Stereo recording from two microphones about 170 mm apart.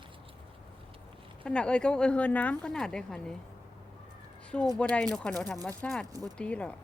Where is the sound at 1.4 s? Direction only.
5° left (ahead or behind).